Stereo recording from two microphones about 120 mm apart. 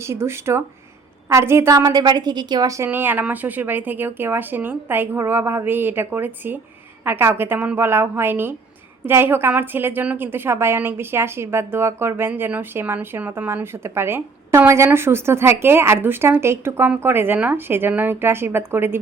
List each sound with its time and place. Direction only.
0.0 s a woman's voice: 20° right (ahead or behind)